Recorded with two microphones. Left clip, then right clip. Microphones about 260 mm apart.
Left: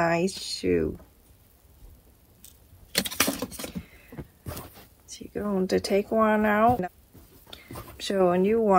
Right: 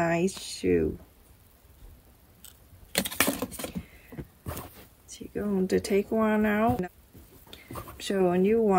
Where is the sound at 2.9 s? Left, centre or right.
Right.